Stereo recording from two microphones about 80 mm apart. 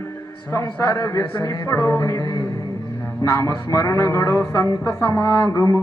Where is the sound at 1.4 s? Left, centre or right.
Left.